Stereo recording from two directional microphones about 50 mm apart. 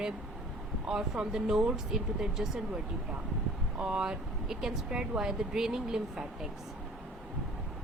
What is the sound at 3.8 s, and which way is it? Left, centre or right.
A woman's voice, centre.